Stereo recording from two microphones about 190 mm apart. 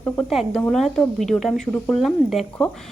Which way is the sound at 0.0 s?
5° left (ahead or behind).